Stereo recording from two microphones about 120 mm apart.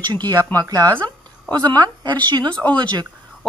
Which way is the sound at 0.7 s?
35° right (ahead or behind).